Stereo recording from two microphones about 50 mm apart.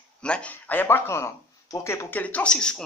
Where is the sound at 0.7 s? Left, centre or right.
Left.